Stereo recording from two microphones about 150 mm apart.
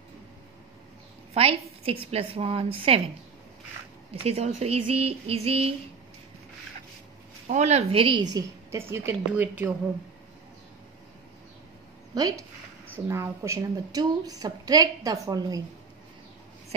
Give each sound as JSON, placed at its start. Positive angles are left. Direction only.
{"t": 1.3, "sound": "a woman's voice", "side_deg": -40}
{"t": 4.1, "sound": "a woman's voice", "side_deg": -40}
{"t": 7.4, "sound": "a woman's voice", "side_deg": -50}
{"t": 12.1, "sound": "a woman's voice", "side_deg": -25}